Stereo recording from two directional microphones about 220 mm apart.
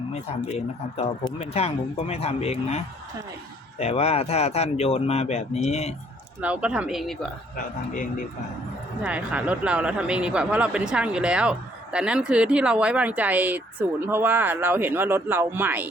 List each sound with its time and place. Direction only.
0.1 s speech: 30° left (ahead or behind)
6.4 s speech: 5° right (ahead or behind)
9.0 s speech: 5° right (ahead or behind)